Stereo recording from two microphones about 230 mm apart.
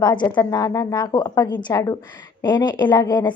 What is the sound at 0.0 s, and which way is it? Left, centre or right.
A woman's voice, centre.